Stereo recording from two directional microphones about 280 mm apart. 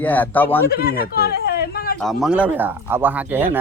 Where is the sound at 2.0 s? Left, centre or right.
Centre.